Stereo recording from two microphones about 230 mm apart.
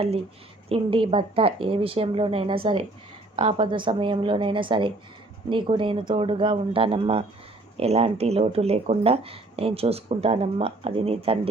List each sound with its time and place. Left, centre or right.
0.7 s speech: right